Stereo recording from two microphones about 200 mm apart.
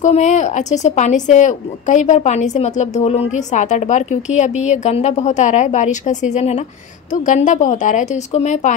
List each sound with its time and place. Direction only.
0.0 s speech: 35° left (ahead or behind)